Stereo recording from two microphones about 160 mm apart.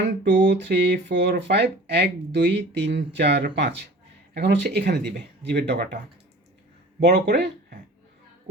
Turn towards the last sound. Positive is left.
turn(degrees=-75)  # may be behind; listen again after turning